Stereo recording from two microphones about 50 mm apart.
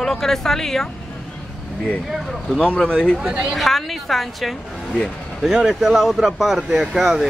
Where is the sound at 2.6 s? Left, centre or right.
Left.